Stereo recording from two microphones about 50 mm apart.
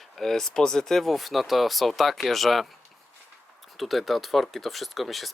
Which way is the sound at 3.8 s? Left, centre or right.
Centre.